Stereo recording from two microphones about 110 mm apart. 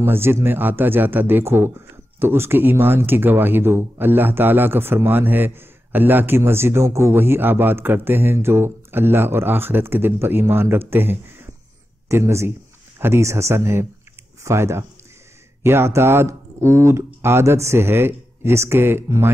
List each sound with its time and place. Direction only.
0.0 s speech: 20° right (ahead or behind)